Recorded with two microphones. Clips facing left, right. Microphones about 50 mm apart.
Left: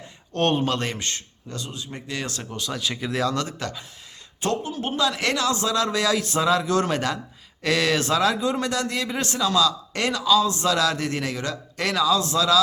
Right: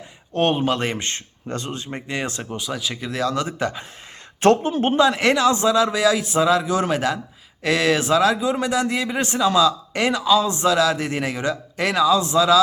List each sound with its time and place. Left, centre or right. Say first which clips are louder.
0.3 s speech: right 3 dB; centre
3.3 s speech: right 4 dB; centre
4.6 s a man's voice: right 8 dB; right
4.9 s a man's voice: right 5 dB; right
5.7 s speech: right 4 dB; centre
10.7 s speech: right 4 dB; centre